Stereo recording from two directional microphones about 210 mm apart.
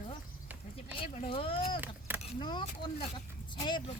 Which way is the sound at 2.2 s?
20° left (ahead or behind).